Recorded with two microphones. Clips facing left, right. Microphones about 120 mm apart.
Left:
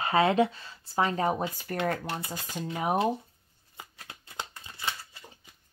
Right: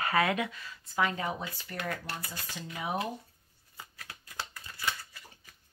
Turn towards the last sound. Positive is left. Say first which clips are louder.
# even
turn(degrees=25)  # may be behind; listen again after turning